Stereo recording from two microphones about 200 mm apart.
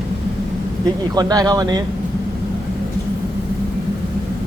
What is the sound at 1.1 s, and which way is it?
Speech, 20° right (ahead or behind).